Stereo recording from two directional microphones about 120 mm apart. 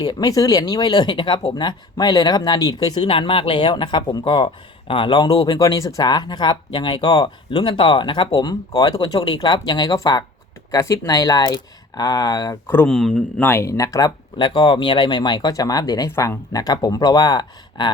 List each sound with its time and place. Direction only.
0.0 s speech: 35° left (ahead or behind)
3.1 s speech: 45° left (ahead or behind)
12.6 s speech: 15° left (ahead or behind)
12.9 s speech: centre (ahead or behind)
13.4 s speech: 20° left (ahead or behind)
14.3 s speech: 40° left (ahead or behind)
16.0 s speech: 25° left (ahead or behind); by 17.9 s 40° left (ahead or behind)